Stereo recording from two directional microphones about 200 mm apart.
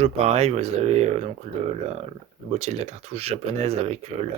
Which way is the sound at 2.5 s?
35° right (ahead or behind).